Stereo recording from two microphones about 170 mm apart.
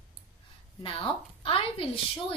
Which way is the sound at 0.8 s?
30° left (ahead or behind).